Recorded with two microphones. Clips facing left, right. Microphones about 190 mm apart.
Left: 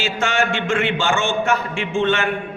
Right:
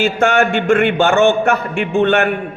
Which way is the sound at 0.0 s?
55° right (ahead or behind).